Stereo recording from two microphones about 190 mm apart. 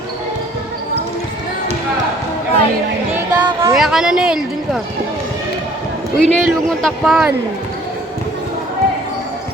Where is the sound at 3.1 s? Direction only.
15° right (ahead or behind).